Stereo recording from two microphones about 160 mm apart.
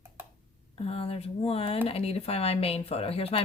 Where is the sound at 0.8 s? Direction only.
40° left (ahead or behind).